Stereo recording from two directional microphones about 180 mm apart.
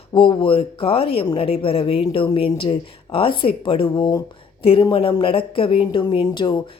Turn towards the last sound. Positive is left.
turn(degrees=25)  # may be behind; listen again after turning